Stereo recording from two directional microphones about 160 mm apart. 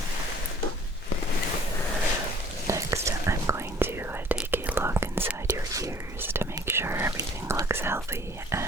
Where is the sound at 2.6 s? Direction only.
20° right (ahead or behind).